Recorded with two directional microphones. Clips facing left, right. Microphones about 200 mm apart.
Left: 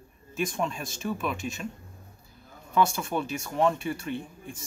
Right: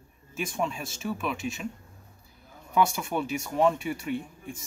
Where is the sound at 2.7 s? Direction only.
10° right (ahead or behind).